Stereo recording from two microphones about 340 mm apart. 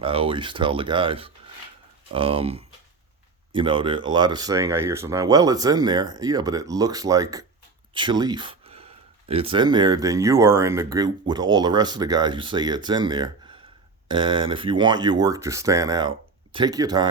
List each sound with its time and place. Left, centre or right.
0.0 s speech: centre